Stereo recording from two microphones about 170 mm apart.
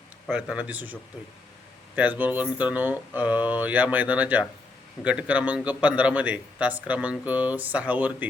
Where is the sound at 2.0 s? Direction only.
10° right (ahead or behind).